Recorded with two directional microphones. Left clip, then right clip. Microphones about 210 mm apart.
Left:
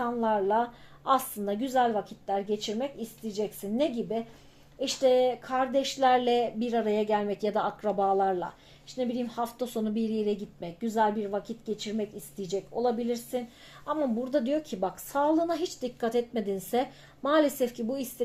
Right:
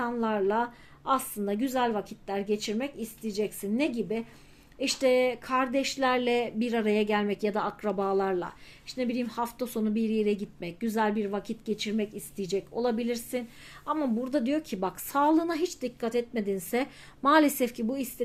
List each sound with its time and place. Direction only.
0.0 s a woman's voice: 15° right (ahead or behind)
1.6 s speech: 20° right (ahead or behind)
13.8 s speech: 15° right (ahead or behind)
16.0 s a woman's voice: 10° right (ahead or behind)
17.2 s speech: 35° right (ahead or behind)